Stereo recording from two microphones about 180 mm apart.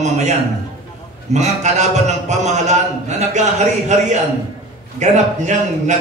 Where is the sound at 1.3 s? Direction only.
40° right (ahead or behind).